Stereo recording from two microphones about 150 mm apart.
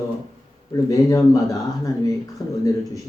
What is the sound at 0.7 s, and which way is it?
Speech, 25° left (ahead or behind).